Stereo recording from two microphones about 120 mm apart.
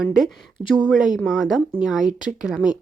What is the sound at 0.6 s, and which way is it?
Speech, 50° right (ahead or behind).